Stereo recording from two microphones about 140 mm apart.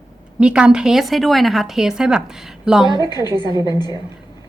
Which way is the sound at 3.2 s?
30° left (ahead or behind).